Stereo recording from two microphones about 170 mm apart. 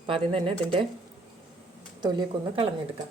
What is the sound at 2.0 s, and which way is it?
Speech, 25° right (ahead or behind).